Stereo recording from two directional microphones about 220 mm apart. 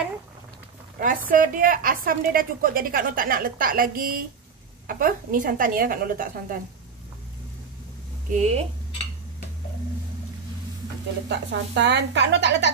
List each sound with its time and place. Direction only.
0.9 s a woman's voice: 40° right (ahead or behind)
8.3 s a woman's voice: 30° right (ahead or behind)
11.2 s speech: 55° right (ahead or behind)